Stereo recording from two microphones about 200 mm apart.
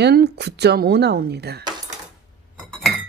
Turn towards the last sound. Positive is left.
turn(degrees=0)  # may be behind; listen again after turning